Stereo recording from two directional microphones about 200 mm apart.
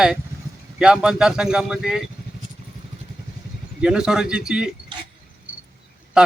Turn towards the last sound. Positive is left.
turn(degrees=-5)  # may be behind; listen again after turning